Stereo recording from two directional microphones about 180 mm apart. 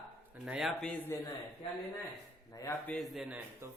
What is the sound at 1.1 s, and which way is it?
Speech, 15° left (ahead or behind).